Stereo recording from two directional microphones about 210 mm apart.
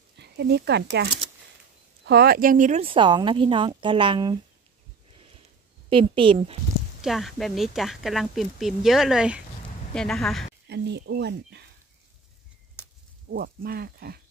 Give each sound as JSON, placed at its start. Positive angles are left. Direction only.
{"t": 0.2, "sound": "speech", "side_deg": -50}
{"t": 5.9, "sound": "speech", "side_deg": -25}
{"t": 7.0, "sound": "speech", "side_deg": 0}
{"t": 10.7, "sound": "speech", "side_deg": -55}
{"t": 13.3, "sound": "speech", "side_deg": -45}